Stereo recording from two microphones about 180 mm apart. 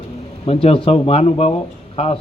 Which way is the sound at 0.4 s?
35° left (ahead or behind).